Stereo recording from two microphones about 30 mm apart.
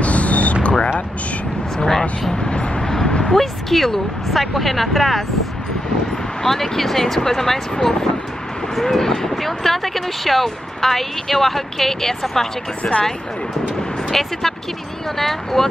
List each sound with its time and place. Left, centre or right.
0.0 s a sound: left
0.6 s music: left
1.9 s vehicle: centre
2.5 s vehicle: left
2.8 s vehicle: left
3.3 s speech: centre
6.4 s speech: centre
8.8 s speech: centre
14.1 s speech: centre